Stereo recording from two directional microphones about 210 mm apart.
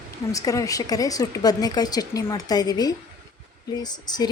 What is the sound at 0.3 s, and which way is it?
A woman's voice, 15° left (ahead or behind).